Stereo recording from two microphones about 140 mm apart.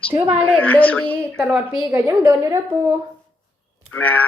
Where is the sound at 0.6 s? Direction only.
10° left (ahead or behind).